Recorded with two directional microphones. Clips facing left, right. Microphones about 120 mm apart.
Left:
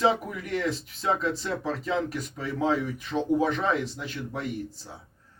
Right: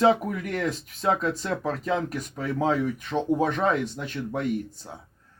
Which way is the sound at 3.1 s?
30° right (ahead or behind).